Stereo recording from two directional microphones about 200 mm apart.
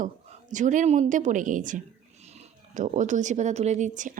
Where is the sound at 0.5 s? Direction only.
40° right (ahead or behind).